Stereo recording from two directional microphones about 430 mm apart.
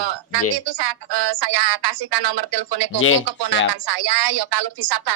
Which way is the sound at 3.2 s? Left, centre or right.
Right.